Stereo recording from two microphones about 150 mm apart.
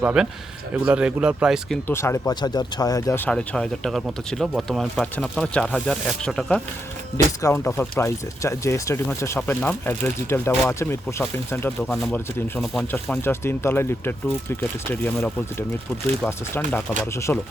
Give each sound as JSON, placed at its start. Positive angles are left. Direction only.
{"t": 0.0, "sound": "speech", "side_deg": -5}
{"t": 1.9, "sound": "speech", "side_deg": 15}
{"t": 3.2, "sound": "speech", "side_deg": 5}
{"t": 7.4, "sound": "speech", "side_deg": 15}
{"t": 16.2, "sound": "speech", "side_deg": 10}